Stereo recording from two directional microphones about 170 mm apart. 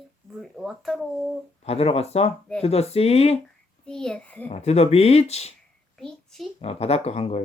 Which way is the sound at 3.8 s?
5° left (ahead or behind).